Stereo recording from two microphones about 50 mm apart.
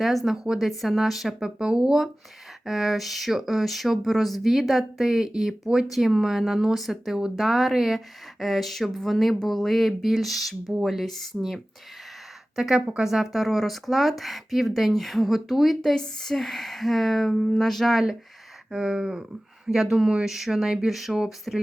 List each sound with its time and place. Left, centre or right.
0.0 s speech: centre
0.4 s speech: centre
0.7 s speech: centre
1.4 s speech: centre
12.8 s speech: right
13.1 s speech: centre
18.7 s speech: centre